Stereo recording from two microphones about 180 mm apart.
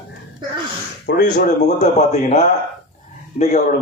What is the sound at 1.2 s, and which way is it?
A man's voice, 45° left (ahead or behind).